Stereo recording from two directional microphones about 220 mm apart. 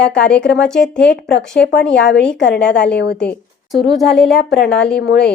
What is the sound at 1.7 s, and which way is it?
Speech, 50° left (ahead or behind).